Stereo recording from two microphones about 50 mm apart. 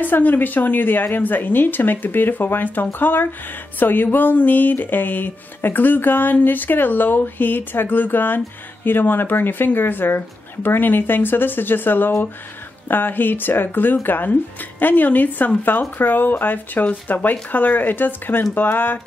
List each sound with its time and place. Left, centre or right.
0.0 s a woman's voice: left